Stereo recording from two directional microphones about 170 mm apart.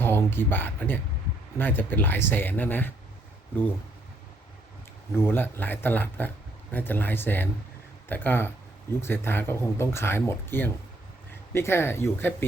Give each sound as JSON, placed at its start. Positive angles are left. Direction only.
{"t": 0.0, "sound": "speech", "side_deg": 15}
{"t": 5.1, "sound": "speech", "side_deg": 15}